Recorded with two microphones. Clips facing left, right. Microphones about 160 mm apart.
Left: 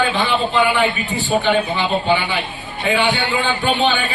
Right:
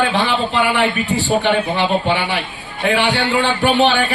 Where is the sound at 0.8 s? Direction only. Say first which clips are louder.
Right 2 dB; 70° right (ahead or behind).